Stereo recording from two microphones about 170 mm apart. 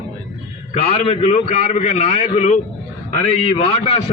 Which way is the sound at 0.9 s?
40° left (ahead or behind).